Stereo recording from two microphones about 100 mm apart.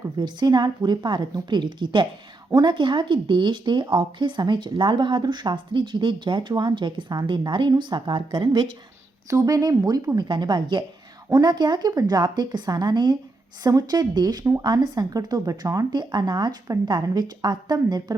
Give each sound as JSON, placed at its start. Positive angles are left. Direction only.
{"t": 0.2, "sound": "speech", "side_deg": -45}
{"t": 9.3, "sound": "speech", "side_deg": -35}
{"t": 10.2, "sound": "speech", "side_deg": -50}
{"t": 16.0, "sound": "speech", "side_deg": -45}